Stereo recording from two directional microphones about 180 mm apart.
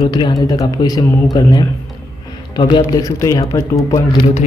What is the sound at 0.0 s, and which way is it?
Speech, 20° left (ahead or behind).